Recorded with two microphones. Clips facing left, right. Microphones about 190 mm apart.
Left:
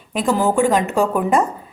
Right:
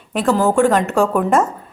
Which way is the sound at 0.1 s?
10° left (ahead or behind).